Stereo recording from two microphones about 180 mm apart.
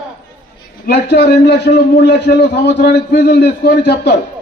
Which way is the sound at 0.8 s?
65° left (ahead or behind).